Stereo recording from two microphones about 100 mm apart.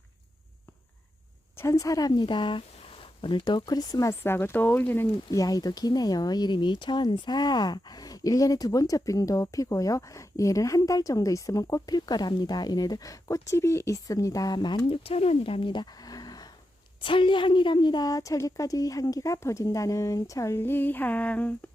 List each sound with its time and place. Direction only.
1.5 s speech: 30° left (ahead or behind)
2.1 s speech: 50° left (ahead or behind)
4.2 s speech: 25° left (ahead or behind)
5.3 s speech: 35° left (ahead or behind)
17.0 s speech: 55° left (ahead or behind); by 21.5 s 15° left (ahead or behind)